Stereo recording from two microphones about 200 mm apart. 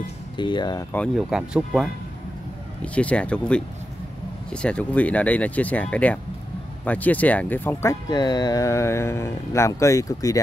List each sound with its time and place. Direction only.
0.4 s speech: 20° left (ahead or behind)
0.9 s speech: centre (ahead or behind)